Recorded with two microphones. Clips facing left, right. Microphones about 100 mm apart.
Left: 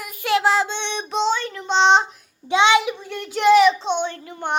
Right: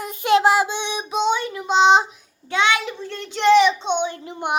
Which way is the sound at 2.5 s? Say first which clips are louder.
Left 4 dB; 20° left (ahead or behind).